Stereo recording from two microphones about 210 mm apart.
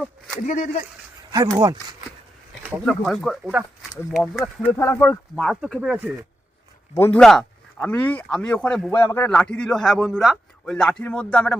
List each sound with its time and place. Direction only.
0.4 s speech: 35° left (ahead or behind)
1.3 s speech: 20° right (ahead or behind)
2.6 s speech: 5° right (ahead or behind)
4.8 s speech: 10° left (ahead or behind); by 6.1 s 5° right (ahead or behind)
6.9 s speech: 10° left (ahead or behind)